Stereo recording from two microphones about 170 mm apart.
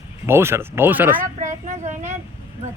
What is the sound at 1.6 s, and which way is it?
Speech, 45° right (ahead or behind).